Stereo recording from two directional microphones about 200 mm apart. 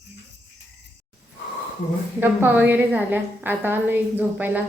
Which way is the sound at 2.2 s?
10° right (ahead or behind).